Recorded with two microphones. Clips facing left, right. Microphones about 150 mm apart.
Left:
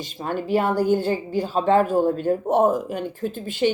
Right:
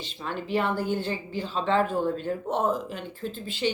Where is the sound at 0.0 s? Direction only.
45° left (ahead or behind).